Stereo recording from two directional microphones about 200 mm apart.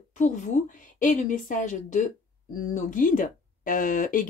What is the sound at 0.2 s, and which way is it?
Speech, 40° left (ahead or behind).